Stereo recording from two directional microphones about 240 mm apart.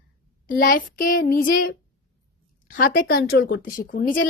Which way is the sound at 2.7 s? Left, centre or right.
Left.